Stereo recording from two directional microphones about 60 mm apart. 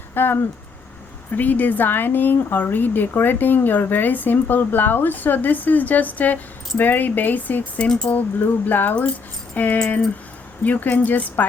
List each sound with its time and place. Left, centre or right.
0.1 s speech: left
7.9 s speech: centre
8.1 s speech: left